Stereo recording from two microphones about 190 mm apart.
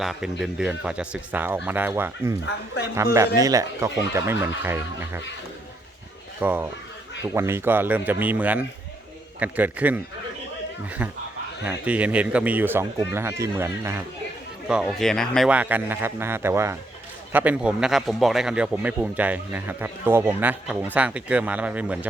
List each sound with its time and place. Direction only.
0.0 s a man's voice: centre (ahead or behind)
6.4 s a man's voice: 10° right (ahead or behind)
11.6 s a man's voice: 5° right (ahead or behind)
14.7 s a man's voice: centre (ahead or behind)